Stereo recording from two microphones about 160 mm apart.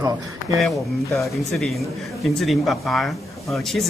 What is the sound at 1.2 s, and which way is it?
Speech, centre (ahead or behind).